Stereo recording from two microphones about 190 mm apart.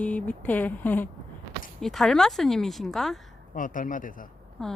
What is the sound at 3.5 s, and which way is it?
Speech, 45° left (ahead or behind).